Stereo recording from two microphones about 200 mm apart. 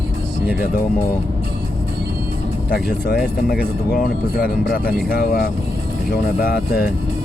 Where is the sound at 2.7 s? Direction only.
45° left (ahead or behind).